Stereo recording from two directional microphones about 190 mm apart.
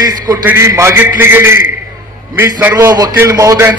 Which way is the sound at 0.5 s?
15° right (ahead or behind).